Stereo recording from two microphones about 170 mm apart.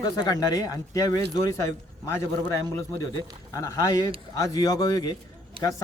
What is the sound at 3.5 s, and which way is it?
Speech, 20° left (ahead or behind).